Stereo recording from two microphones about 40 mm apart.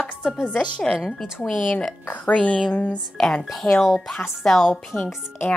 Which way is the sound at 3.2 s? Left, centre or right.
Centre.